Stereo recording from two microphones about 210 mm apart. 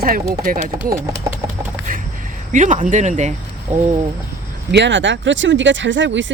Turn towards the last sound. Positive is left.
turn(degrees=-60)  # may be behind; listen again after turning